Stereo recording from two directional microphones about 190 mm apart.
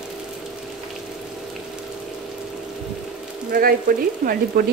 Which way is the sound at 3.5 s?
50° right (ahead or behind).